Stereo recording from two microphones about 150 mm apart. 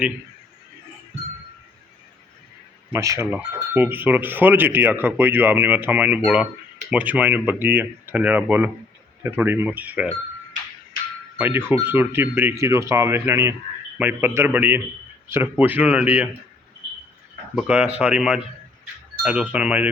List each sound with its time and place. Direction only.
2.9 s speech: 20° right (ahead or behind)
11.3 s speech: 15° right (ahead or behind)
17.5 s speech: 5° right (ahead or behind)